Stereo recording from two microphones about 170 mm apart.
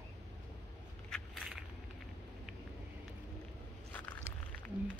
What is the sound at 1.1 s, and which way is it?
Crushing, centre (ahead or behind).